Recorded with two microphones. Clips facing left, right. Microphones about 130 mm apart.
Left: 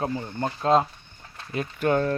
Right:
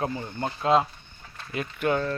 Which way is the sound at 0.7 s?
10° right (ahead or behind).